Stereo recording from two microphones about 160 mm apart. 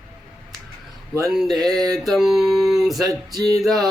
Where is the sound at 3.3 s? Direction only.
25° right (ahead or behind).